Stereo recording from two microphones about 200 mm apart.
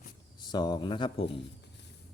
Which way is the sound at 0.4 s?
20° left (ahead or behind).